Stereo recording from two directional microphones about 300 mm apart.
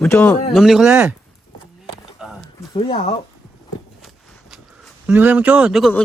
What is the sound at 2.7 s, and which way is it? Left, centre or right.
Speech, centre.